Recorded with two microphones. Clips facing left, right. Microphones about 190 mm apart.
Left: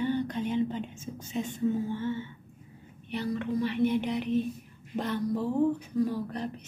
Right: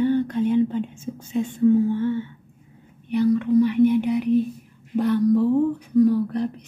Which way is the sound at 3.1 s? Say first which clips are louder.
Right 12 dB; 15° right (ahead or behind).